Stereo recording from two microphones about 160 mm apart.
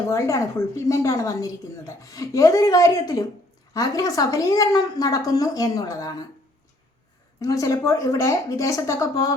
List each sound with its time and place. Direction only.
0.1 s a woman's voice: 20° left (ahead or behind)
7.3 s a woman's voice: 20° left (ahead or behind)